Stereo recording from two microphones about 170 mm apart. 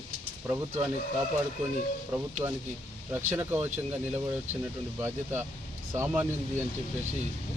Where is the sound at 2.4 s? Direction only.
15° right (ahead or behind).